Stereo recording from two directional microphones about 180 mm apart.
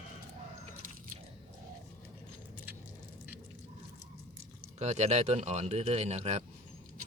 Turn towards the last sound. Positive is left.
turn(degrees=-35)  # may be behind; listen again after turning